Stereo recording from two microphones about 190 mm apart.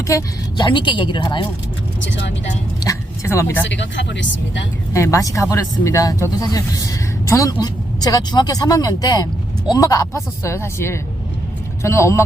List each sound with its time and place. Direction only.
0.1 s a woman's voice: 20° left (ahead or behind)
2.0 s speech: 75° left (ahead or behind)
2.8 s speech: 15° left (ahead or behind)
3.7 s speech: 70° left (ahead or behind)
4.9 s a woman's voice: 15° left (ahead or behind)